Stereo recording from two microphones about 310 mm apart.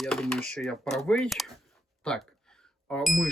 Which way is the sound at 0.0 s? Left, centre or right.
Centre.